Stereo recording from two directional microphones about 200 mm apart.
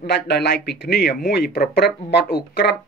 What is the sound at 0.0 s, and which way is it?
Speech, 55° left (ahead or behind).